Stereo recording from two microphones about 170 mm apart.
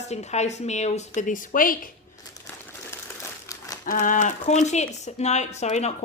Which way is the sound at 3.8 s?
50° left (ahead or behind).